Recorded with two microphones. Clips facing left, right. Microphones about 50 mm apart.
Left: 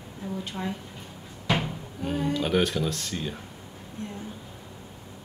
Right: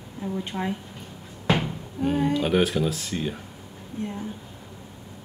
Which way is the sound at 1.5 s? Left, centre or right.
Centre.